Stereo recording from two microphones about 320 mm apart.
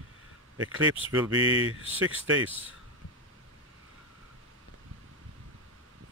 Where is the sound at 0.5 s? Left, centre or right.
Right.